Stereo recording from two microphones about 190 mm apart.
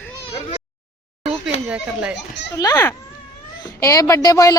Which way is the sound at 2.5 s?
15° left (ahead or behind).